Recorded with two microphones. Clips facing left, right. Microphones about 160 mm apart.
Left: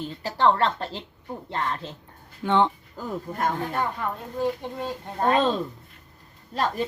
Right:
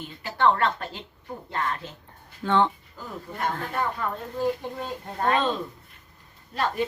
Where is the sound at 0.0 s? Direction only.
35° left (ahead or behind).